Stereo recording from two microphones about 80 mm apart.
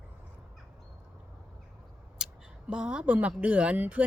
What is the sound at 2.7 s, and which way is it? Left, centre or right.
A woman's voice, centre.